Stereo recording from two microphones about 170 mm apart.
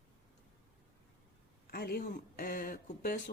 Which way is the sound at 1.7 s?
65° left (ahead or behind).